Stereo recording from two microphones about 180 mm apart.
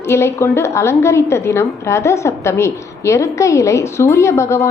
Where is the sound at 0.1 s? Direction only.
15° left (ahead or behind).